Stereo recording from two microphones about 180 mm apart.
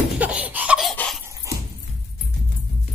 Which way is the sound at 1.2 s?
15° right (ahead or behind).